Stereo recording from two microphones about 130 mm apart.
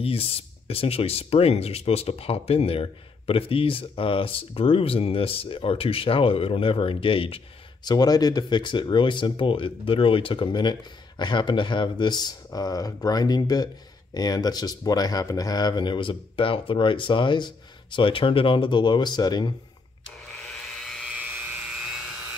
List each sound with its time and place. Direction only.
0.0 s speech: 45° left (ahead or behind)
7.8 s speech: 30° left (ahead or behind)
20.2 s a sound: 5° left (ahead or behind)
21.1 s helicopter: 10° right (ahead or behind)